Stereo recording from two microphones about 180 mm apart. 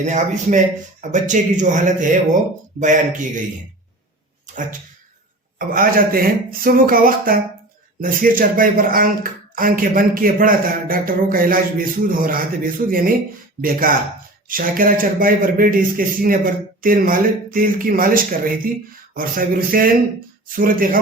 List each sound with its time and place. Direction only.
0.0 s speech: 40° right (ahead or behind)
4.4 s speech: 45° right (ahead or behind)